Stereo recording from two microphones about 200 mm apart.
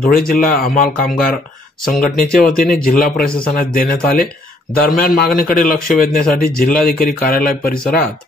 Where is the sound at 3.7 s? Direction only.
45° left (ahead or behind).